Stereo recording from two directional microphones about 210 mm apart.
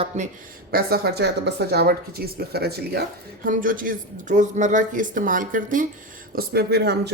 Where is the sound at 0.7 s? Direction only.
45° right (ahead or behind).